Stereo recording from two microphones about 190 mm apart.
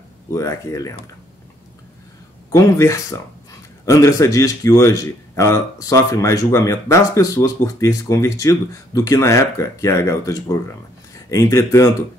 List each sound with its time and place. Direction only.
0.3 s a man's voice: 15° left (ahead or behind)
2.5 s a man's voice: 15° left (ahead or behind)